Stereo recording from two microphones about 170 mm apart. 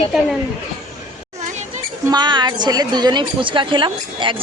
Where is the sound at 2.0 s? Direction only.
25° right (ahead or behind).